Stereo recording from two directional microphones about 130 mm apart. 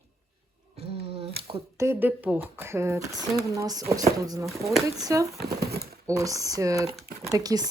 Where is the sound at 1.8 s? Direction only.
15° right (ahead or behind).